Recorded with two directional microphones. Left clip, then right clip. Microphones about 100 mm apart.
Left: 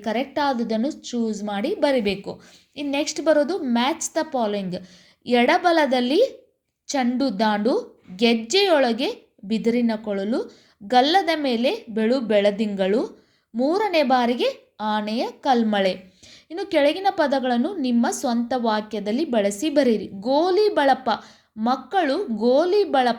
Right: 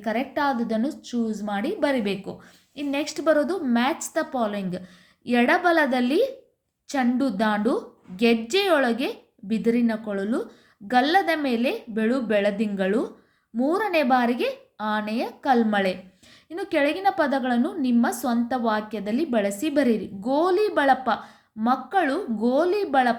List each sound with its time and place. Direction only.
0.0 s a woman's voice: 30° left (ahead or behind)